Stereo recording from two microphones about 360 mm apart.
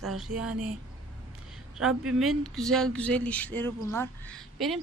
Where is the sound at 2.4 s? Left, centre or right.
Centre.